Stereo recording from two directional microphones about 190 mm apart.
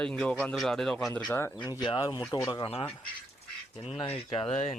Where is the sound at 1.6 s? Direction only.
25° left (ahead or behind).